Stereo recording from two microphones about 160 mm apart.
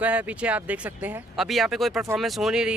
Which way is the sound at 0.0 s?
10° right (ahead or behind).